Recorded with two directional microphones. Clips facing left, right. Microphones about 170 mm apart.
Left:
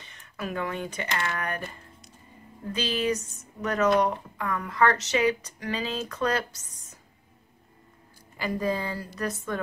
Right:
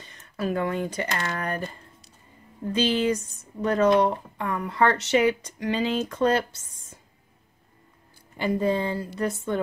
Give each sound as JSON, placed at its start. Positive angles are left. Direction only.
{"t": 0.0, "sound": "speech", "side_deg": -35}
{"t": 2.7, "sound": "speech", "side_deg": -30}
{"t": 8.4, "sound": "speech", "side_deg": -25}